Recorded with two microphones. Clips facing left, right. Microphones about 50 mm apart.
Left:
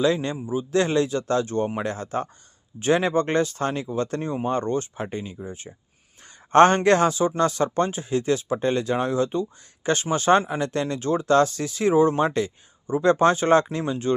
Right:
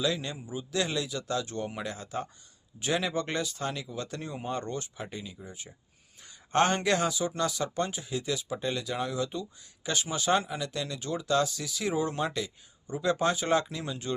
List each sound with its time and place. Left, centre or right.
0.0 s a man's voice: left
0.3 s a man's voice: left
0.7 s a man's voice: left